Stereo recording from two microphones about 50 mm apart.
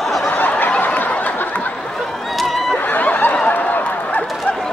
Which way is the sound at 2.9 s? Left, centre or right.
Left.